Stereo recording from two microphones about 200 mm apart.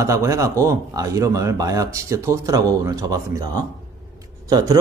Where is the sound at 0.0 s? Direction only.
15° right (ahead or behind).